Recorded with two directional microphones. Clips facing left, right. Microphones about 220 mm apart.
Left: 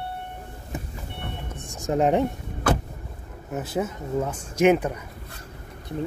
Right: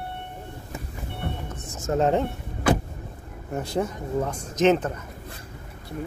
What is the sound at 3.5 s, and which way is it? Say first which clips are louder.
Speech: right 1 dB; 5° left (ahead or behind).